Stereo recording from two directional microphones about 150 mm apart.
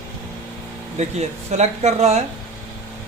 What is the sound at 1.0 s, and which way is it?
Speech, 50° right (ahead or behind).